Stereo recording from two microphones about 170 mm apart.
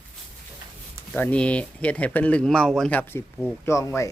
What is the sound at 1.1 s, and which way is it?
Speech, 10° left (ahead or behind).